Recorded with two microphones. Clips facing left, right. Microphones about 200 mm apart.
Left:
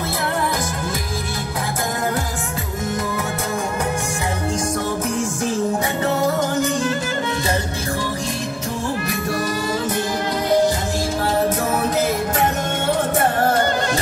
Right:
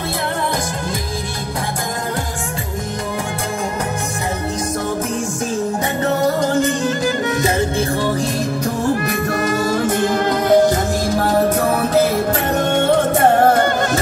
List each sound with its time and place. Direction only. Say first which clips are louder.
9.0 s music: right 4 dB; 50° right (ahead or behind)